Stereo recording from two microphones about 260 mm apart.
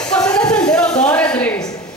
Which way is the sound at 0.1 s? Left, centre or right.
Centre.